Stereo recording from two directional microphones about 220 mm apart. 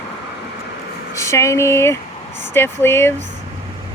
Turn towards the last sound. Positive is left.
turn(degrees=10)  # may be behind; listen again after turning